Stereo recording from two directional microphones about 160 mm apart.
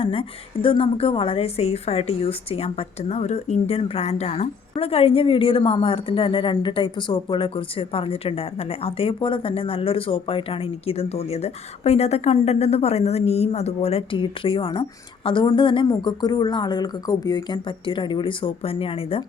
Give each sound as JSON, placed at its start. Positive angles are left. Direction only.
{"t": 0.0, "sound": "a woman's voice", "side_deg": 35}